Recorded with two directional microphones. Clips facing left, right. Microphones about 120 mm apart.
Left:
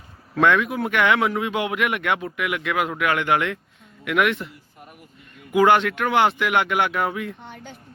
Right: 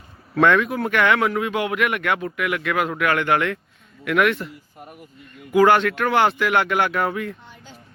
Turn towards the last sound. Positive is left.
turn(degrees=60)  # may be behind; listen again after turning